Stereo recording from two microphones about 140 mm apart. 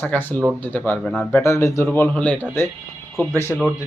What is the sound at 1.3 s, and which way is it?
Speech, 20° left (ahead or behind).